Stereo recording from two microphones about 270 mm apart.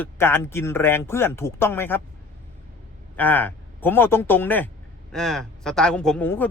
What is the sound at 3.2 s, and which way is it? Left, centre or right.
Speech, centre.